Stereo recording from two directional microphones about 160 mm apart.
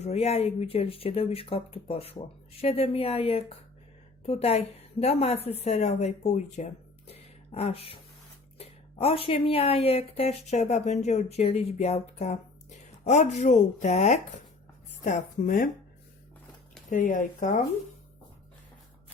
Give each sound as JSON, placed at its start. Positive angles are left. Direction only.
{"t": 0.0, "sound": "a woman's voice", "side_deg": 40}
{"t": 7.1, "sound": "a sound", "side_deg": 40}
{"t": 8.5, "sound": "a woman's voice", "side_deg": 35}
{"t": 16.9, "sound": "a woman's voice", "side_deg": 55}